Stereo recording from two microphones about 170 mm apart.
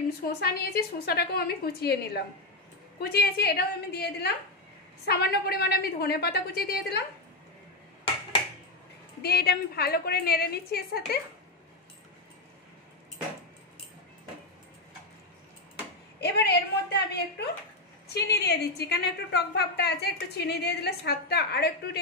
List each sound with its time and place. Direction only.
0.2 s a woman's voice: 65° left (ahead or behind)
9.2 s a woman's voice: 65° left (ahead or behind)
16.2 s a sound: 80° left
18.1 s a woman's voice: 75° left (ahead or behind)